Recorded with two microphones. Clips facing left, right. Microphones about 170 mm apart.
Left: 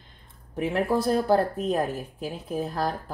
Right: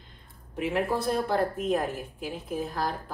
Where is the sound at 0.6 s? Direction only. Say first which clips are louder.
Left 3 dB; 40° left (ahead or behind).